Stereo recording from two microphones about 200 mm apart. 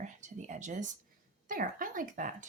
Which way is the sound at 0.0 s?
35° right (ahead or behind).